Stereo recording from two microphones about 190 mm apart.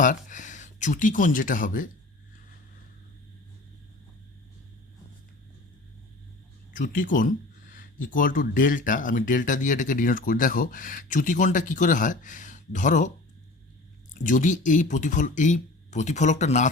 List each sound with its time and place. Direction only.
0.0 s speech: 45° left (ahead or behind)
6.7 s speech: 45° left (ahead or behind)
14.1 s speech: 40° left (ahead or behind)